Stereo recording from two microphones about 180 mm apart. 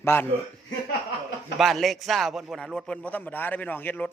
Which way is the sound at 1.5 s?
Centre (ahead or behind).